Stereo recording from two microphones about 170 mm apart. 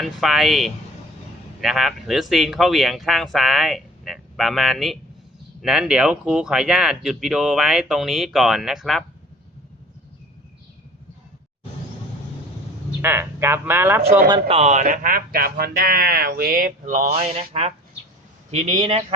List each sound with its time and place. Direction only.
0.0 s speech: centre (ahead or behind)
13.0 s speech: 15° right (ahead or behind)
14.3 s speech: 30° right (ahead or behind)